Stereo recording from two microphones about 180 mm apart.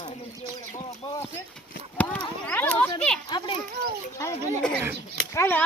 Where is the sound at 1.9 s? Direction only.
10° left (ahead or behind).